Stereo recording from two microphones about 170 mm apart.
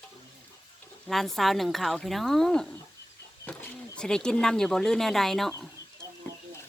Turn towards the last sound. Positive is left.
turn(degrees=0)  # may be behind; listen again after turning